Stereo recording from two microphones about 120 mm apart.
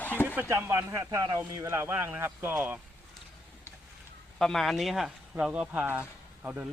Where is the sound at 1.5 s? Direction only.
25° right (ahead or behind).